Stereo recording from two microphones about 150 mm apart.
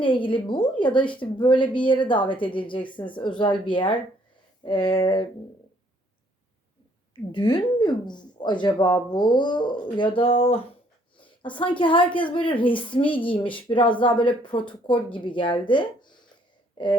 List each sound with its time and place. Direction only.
0.0 s a woman's voice: 35° left (ahead or behind)
7.3 s a woman's voice: 30° left (ahead or behind)
16.7 s a sound: 30° left (ahead or behind)